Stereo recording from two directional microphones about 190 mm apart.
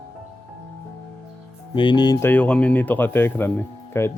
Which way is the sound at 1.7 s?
25° left (ahead or behind).